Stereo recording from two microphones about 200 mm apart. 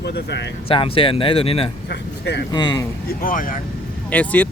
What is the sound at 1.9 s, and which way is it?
Speech, 55° left (ahead or behind).